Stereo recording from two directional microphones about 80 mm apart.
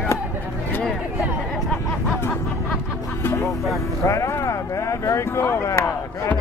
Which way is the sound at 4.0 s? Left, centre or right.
Left.